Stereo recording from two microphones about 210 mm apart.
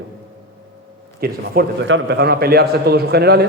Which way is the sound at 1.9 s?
60° right (ahead or behind).